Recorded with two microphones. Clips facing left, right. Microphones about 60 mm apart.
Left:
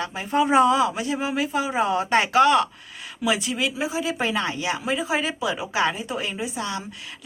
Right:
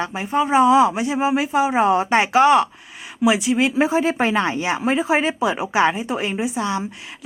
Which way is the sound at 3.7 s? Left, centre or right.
Right.